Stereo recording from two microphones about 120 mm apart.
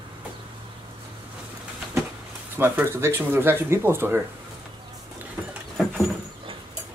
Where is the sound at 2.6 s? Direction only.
20° right (ahead or behind).